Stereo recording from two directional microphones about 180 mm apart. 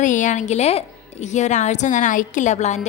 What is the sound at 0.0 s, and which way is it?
A woman's voice, 45° left (ahead or behind).